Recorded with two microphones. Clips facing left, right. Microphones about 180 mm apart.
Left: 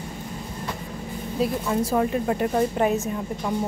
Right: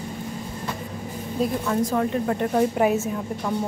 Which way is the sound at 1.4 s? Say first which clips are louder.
Right 1 dB; 5° left (ahead or behind).